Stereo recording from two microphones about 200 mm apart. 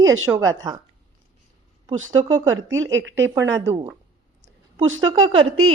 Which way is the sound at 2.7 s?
70° right (ahead or behind).